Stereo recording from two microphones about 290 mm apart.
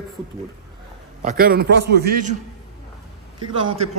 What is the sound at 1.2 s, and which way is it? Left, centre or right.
A man's voice, right.